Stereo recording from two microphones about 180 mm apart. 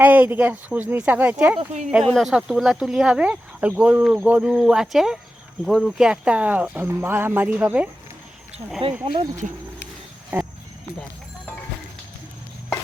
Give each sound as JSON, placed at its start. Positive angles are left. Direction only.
{"t": 0.0, "sound": "speech", "side_deg": -10}
{"t": 1.5, "sound": "speech", "side_deg": -40}
{"t": 1.9, "sound": "speech", "side_deg": 0}
{"t": 9.1, "sound": "speech", "side_deg": -20}